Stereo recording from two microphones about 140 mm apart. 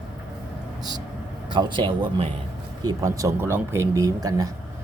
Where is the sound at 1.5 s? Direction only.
35° right (ahead or behind).